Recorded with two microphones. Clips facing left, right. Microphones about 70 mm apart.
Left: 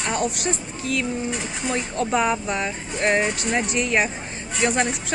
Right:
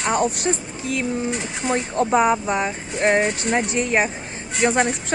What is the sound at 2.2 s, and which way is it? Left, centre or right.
Speech, right.